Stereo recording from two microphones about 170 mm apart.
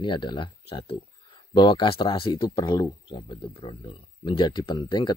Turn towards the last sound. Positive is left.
turn(degrees=25)  # may be behind; listen again after turning